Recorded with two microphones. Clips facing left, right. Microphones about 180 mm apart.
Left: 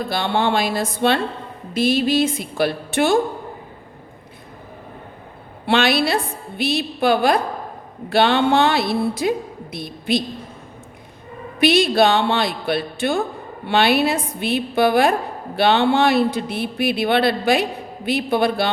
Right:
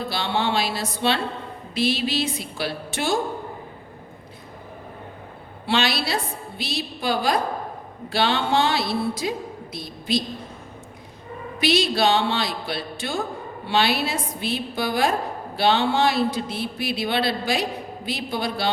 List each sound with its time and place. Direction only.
0.1 s a woman's voice: 55° left (ahead or behind)
5.6 s speech: 55° left (ahead or behind)
11.6 s speech: 55° left (ahead or behind)